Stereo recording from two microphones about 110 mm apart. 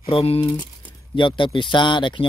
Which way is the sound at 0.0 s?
60° left (ahead or behind).